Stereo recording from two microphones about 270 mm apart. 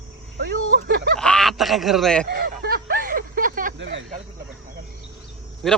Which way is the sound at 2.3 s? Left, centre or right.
Right.